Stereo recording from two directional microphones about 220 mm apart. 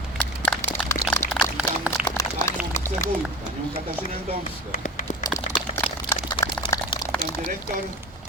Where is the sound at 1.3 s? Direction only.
5° right (ahead or behind).